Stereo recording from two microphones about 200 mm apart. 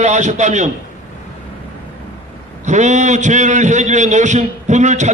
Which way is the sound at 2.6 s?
35° right (ahead or behind).